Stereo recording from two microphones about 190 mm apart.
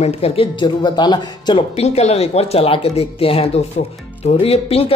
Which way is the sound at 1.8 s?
35° left (ahead or behind).